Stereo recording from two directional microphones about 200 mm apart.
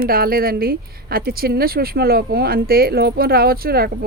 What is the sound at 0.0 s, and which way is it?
Speech, 50° right (ahead or behind).